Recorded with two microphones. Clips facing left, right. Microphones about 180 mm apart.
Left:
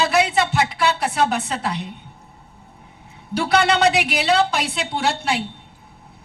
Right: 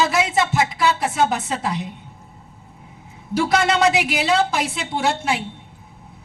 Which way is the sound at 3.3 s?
65° left (ahead or behind).